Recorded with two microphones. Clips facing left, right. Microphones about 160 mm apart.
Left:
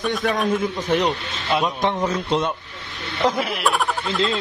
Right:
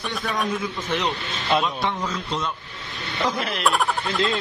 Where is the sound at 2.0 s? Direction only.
55° left (ahead or behind).